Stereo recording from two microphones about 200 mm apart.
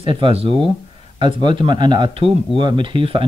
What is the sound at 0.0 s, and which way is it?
Speech, 25° right (ahead or behind).